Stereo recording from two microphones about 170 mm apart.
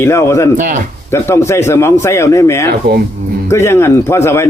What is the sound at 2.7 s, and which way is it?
Speech, 65° right (ahead or behind).